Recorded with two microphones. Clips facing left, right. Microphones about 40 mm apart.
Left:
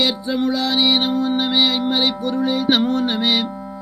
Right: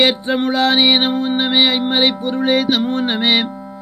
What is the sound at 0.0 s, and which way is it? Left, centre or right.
Music, right.